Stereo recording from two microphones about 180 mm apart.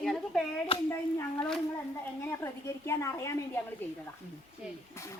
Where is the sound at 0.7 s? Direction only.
30° left (ahead or behind).